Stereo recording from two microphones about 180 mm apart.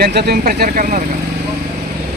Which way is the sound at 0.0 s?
65° right (ahead or behind).